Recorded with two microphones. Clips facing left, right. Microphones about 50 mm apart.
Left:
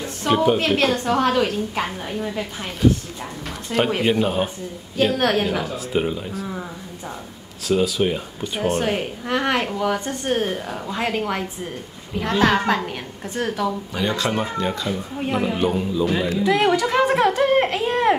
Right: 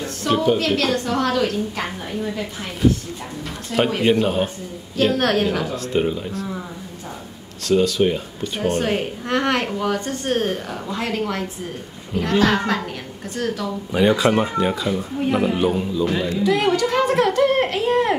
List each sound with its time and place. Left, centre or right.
0.0 s a sound: centre
0.6 s a woman's voice: left
4.0 s speech: centre
7.6 s a woman's voice: centre; by 13.7 s left
13.9 s speech: centre